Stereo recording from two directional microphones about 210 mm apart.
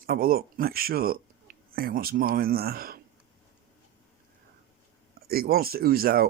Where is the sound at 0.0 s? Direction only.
45° right (ahead or behind).